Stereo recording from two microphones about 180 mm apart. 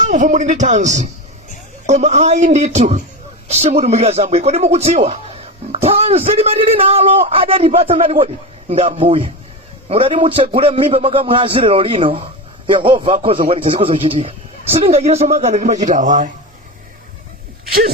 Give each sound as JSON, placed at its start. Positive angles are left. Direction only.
{"t": 0.1, "sound": "a man's voice", "side_deg": -40}